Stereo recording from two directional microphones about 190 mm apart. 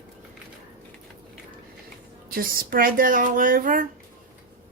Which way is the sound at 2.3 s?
50° right (ahead or behind).